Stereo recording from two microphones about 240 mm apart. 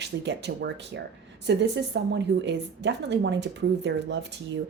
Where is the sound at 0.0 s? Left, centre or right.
Right.